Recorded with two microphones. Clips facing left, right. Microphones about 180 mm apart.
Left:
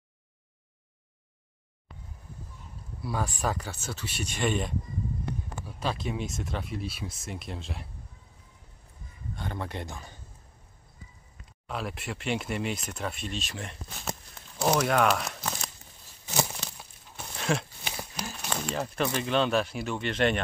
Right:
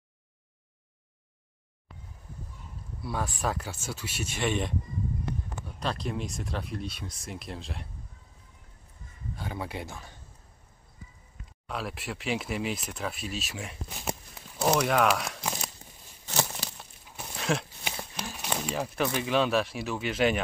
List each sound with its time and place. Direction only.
3.0 s speech: centre (ahead or behind)
5.8 s speech: centre (ahead or behind)
9.3 s speech: 5° right (ahead or behind)
11.6 s speech: centre (ahead or behind)
13.9 s clip-clop: 5° right (ahead or behind)
14.7 s speech: 5° left (ahead or behind)
15.4 s a sound: 10° right (ahead or behind)
19.1 s speech: 5° right (ahead or behind)